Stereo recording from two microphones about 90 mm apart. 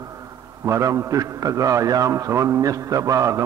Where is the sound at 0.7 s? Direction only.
35° right (ahead or behind).